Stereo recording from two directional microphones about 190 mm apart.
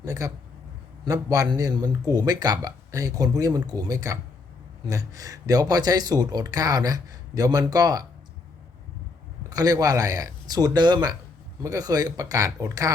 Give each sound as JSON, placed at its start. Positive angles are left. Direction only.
{"t": 0.0, "sound": "speech", "side_deg": -20}
{"t": 9.5, "sound": "speech", "side_deg": -20}